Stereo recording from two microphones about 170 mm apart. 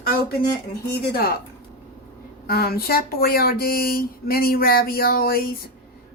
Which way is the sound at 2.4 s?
65° left (ahead or behind).